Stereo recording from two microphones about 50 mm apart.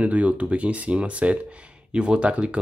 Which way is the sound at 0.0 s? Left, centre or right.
Right.